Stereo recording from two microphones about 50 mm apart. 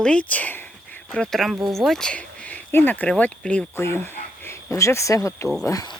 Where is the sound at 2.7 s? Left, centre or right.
Left.